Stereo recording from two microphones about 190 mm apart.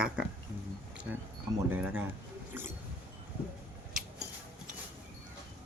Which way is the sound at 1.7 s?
10° right (ahead or behind).